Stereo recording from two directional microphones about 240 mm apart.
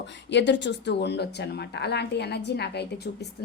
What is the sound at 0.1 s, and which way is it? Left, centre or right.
Speech, left.